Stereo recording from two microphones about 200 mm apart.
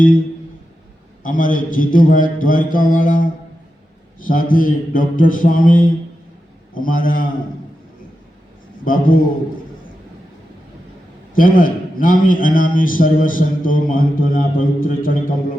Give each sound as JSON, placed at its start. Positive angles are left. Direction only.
{"t": 1.2, "sound": "a man's voice", "side_deg": 40}
{"t": 8.8, "sound": "a man's voice", "side_deg": 45}
{"t": 11.3, "sound": "a man's voice", "side_deg": 45}